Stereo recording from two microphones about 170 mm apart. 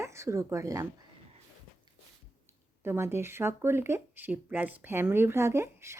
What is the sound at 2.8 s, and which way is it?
Speech, 15° right (ahead or behind).